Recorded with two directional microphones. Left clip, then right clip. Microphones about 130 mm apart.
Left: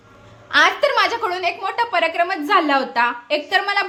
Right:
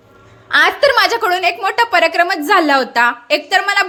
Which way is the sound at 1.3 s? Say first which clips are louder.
Right 7 dB; 25° right (ahead or behind).